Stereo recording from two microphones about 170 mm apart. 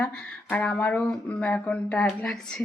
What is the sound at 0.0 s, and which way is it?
Speech, 5° left (ahead or behind).